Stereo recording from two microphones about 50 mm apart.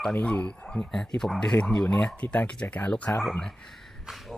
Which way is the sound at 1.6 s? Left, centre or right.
Left.